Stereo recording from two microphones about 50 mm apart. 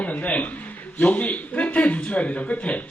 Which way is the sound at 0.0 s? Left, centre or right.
Left.